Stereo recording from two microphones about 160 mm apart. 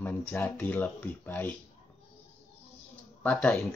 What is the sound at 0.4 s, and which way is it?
Speech, 15° left (ahead or behind).